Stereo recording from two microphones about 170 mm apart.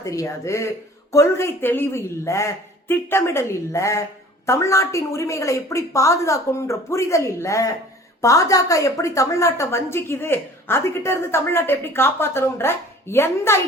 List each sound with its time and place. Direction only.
0.0 s a woman's voice: 20° left (ahead or behind)